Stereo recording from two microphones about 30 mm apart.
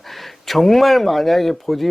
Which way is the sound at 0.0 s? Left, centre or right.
Centre.